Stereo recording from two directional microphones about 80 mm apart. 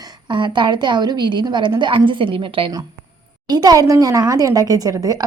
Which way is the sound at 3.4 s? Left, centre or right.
Right.